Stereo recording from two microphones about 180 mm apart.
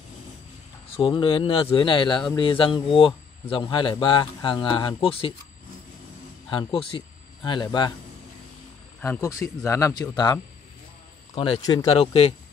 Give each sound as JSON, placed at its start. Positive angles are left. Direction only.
{"t": 0.9, "sound": "speech", "side_deg": 30}
{"t": 6.5, "sound": "speech", "side_deg": 30}
{"t": 9.0, "sound": "speech", "side_deg": 15}